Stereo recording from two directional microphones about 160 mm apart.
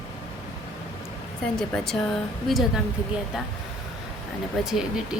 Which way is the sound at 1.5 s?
5° left (ahead or behind).